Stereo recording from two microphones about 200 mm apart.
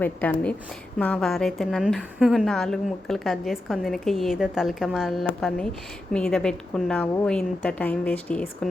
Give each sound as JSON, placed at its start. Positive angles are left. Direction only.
{"t": 0.0, "sound": "a woman's voice", "side_deg": 10}